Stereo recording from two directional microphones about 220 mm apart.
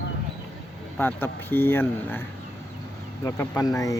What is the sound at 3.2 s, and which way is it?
Speech, 15° left (ahead or behind).